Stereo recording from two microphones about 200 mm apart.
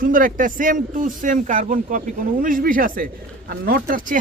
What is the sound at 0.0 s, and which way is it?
A man's voice, 45° right (ahead or behind).